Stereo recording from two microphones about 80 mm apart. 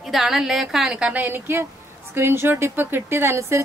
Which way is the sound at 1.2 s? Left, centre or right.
Right.